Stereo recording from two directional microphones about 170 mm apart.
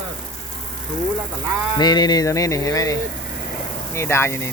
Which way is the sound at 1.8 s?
25° left (ahead or behind).